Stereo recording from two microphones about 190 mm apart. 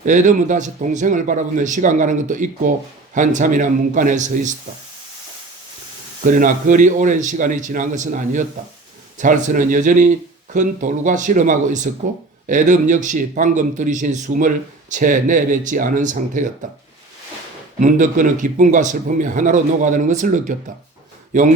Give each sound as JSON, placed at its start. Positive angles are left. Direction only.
{"t": 0.0, "sound": "a man's voice", "side_deg": -40}
{"t": 6.2, "sound": "a man's voice", "side_deg": -45}
{"t": 17.7, "sound": "a man's voice", "side_deg": -40}